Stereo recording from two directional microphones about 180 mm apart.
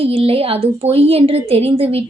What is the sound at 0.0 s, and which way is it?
A woman's voice, 35° right (ahead or behind).